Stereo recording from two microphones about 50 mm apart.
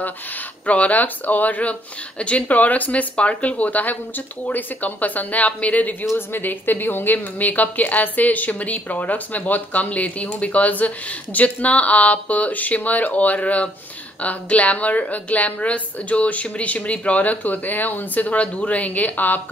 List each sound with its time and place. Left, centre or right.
0.7 s a woman's voice: left
6.1 s a woman's voice: left